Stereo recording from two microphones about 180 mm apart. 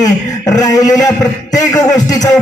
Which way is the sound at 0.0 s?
20° left (ahead or behind).